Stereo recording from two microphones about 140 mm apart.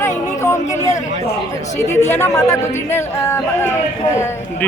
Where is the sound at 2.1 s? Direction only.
20° left (ahead or behind).